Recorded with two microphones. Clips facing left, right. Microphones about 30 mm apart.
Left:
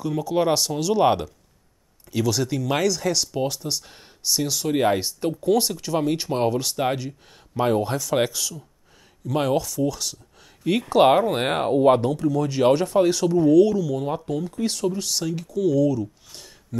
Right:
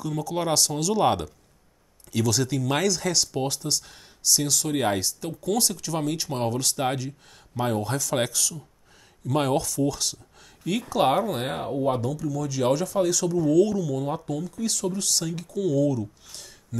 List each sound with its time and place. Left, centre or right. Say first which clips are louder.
0.0 s speech: left 5 dB; centre
5.0 s speech: left 5 dB; left
5.5 s speech: left 4 dB; centre
7.5 s speech: left 5 dB; centre
7.9 s speech: left 3 dB; centre
9.2 s speech: left 2 dB; centre
10.8 s speech: left 6 dB; left; by 14.4 s centre
14.4 s speech: left 3 dB; left
14.9 s speech: left 2 dB; centre